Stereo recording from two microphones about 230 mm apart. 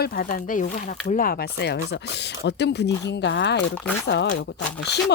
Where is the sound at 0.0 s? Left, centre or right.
Left.